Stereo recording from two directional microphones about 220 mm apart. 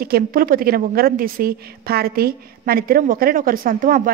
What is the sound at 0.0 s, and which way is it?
A woman's voice, 40° right (ahead or behind).